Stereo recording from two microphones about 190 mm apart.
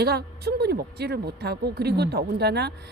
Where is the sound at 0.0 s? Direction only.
55° right (ahead or behind).